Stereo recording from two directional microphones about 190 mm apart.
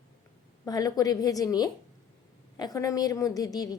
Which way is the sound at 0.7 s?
20° left (ahead or behind).